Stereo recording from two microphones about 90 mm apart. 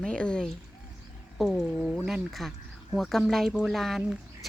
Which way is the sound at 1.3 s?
5° right (ahead or behind).